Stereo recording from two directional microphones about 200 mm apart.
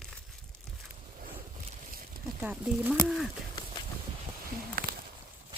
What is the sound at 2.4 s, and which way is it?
Speech, 5° right (ahead or behind).